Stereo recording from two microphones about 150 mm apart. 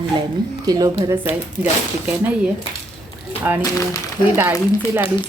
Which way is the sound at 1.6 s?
10° right (ahead or behind).